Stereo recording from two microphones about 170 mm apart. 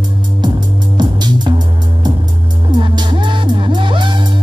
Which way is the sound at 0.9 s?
25° right (ahead or behind).